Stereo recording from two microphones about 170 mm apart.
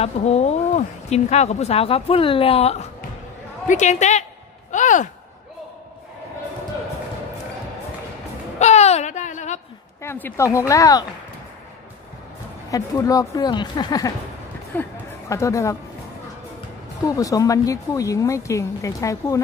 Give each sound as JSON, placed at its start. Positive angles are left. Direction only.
{"t": 0.0, "sound": "a woman's voice", "side_deg": 40}
{"t": 4.6, "sound": "a sound", "side_deg": 45}
{"t": 8.5, "sound": "a sound", "side_deg": 40}
{"t": 10.0, "sound": "speech", "side_deg": 15}
{"t": 12.7, "sound": "speech", "side_deg": 20}
{"t": 17.0, "sound": "speech", "side_deg": 20}